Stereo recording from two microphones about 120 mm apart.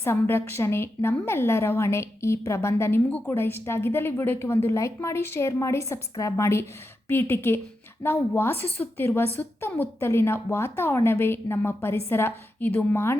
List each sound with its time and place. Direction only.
0.0 s a woman's voice: 20° left (ahead or behind)